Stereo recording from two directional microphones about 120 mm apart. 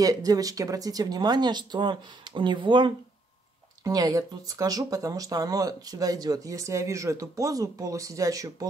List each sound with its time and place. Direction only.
0.0 s speech: 30° right (ahead or behind)
3.8 s speech: 30° right (ahead or behind)